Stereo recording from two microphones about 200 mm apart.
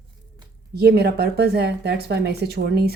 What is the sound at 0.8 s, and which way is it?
Speech, 55° right (ahead or behind).